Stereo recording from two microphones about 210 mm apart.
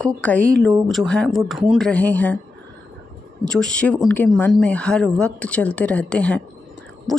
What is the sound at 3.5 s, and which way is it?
Speech, 5° left (ahead or behind).